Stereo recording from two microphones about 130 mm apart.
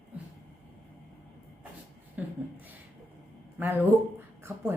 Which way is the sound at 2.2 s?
10° right (ahead or behind).